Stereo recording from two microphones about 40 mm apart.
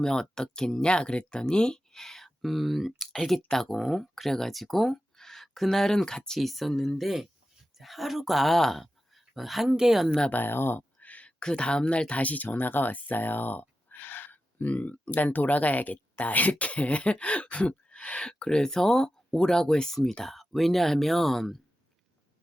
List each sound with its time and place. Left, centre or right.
0.0 s speech: centre
6.4 s speech: centre
7.0 s speech: centre
9.6 s speech: centre
10.4 s speech: left
11.0 s a sound: left
11.3 s speech: left
14.7 s speech: left; by 21.6 s centre